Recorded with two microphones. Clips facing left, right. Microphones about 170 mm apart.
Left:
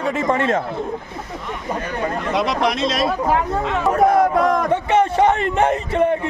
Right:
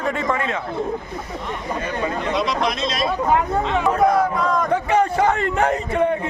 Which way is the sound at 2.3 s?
65° left (ahead or behind).